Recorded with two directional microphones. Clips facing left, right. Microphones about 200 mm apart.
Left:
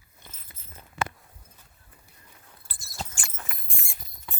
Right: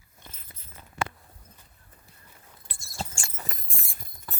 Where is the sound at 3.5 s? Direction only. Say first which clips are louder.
Right 3 dB; 40° right (ahead or behind).